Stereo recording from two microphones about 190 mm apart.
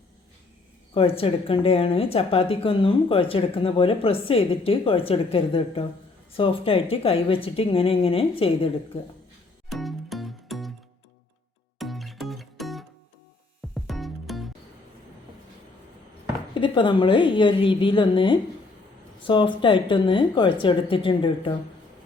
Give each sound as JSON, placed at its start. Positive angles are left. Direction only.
{"t": 0.9, "sound": "a woman's voice", "side_deg": 30}
{"t": 9.6, "sound": "music", "side_deg": 0}
{"t": 11.8, "sound": "music", "side_deg": 0}
{"t": 16.6, "sound": "a woman's voice", "side_deg": 25}